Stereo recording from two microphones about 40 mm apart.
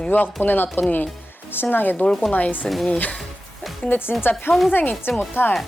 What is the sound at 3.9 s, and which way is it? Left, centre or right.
Speech, left.